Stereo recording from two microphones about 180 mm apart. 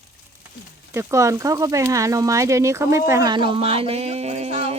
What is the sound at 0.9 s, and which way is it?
Speech, 15° right (ahead or behind).